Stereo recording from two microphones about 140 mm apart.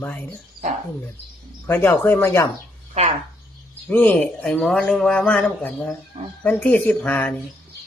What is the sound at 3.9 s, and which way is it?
Speech, 10° left (ahead or behind).